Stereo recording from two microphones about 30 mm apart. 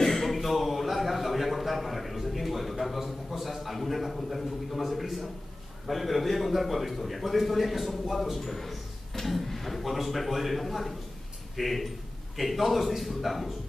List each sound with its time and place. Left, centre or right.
0.0 s a man's voice: centre